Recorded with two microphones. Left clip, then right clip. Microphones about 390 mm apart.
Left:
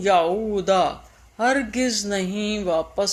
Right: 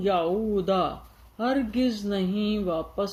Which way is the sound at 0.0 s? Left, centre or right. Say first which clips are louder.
Left 6 dB; left.